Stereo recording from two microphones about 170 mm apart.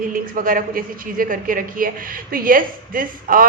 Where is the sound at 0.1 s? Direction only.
55° right (ahead or behind).